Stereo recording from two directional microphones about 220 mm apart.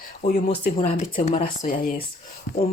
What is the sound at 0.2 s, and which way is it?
Speech, 40° left (ahead or behind).